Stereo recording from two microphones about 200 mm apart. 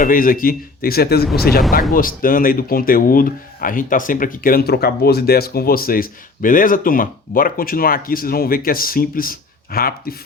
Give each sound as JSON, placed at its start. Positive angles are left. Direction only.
{"t": 0.0, "sound": "speech", "side_deg": 45}